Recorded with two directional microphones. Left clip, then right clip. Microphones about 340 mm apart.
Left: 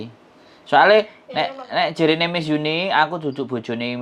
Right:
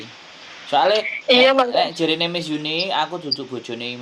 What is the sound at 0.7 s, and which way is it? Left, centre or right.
Speech, left.